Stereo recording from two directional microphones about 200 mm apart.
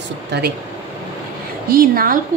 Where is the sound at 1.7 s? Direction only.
45° right (ahead or behind).